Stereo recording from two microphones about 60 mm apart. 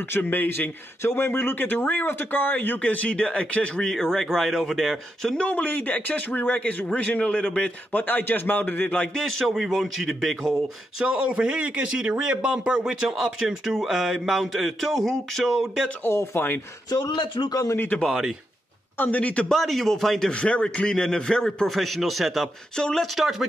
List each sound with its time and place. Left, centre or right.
0.2 s a man's voice: left
3.9 s speech: centre
5.4 s speech: left
7.9 s a man's voice: left
9.1 s speech: centre
11.0 s a man's voice: centre
13.1 s speech: centre
16.0 s a man's voice: left
17.5 s a man's voice: left
18.9 s speech: left
19.5 s speech: centre
20.2 s a man's voice: centre
22.8 s a man's voice: centre
23.0 s speech: centre